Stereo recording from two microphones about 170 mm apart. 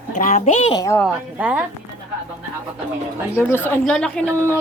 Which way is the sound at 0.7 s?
20° left (ahead or behind).